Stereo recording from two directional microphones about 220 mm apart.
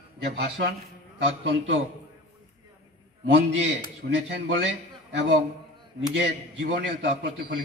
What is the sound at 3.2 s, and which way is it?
A man's voice, 55° right (ahead or behind).